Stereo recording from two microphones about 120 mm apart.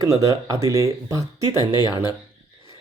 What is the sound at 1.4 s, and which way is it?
Speech, 35° left (ahead or behind).